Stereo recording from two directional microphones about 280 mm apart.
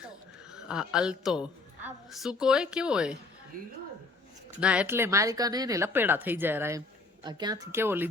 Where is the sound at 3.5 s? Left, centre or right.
Right.